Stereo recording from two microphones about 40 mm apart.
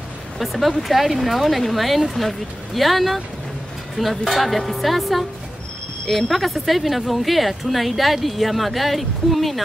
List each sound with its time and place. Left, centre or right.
0.4 s speech: centre